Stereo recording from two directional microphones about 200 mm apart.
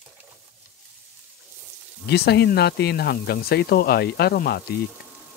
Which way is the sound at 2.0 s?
55° left (ahead or behind).